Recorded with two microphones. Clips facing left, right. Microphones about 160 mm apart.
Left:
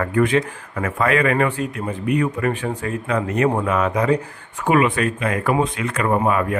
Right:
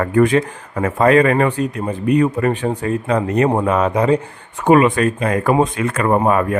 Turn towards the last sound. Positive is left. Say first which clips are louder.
# right 4 dB
turn(degrees=-45)  # may be behind; listen again after turning